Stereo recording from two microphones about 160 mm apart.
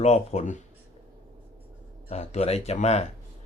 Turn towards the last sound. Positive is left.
turn(degrees=40)  # may be behind; listen again after turning